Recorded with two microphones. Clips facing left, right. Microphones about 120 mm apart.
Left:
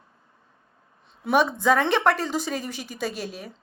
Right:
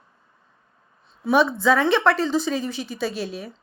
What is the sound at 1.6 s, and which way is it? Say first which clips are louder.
Speech: right 2 dB; 50° left (ahead or behind).